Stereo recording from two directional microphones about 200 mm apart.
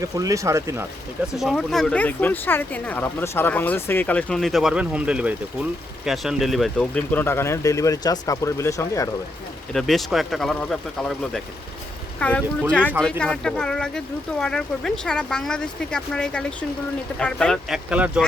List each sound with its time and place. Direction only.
0.0 s speech: 15° right (ahead or behind)
1.4 s speech: centre (ahead or behind)
9.7 s speech: centre (ahead or behind)